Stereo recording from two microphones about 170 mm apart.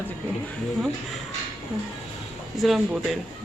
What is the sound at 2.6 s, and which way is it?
Speech, centre (ahead or behind).